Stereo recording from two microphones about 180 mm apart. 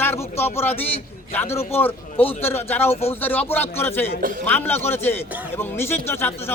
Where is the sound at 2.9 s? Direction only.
35° left (ahead or behind).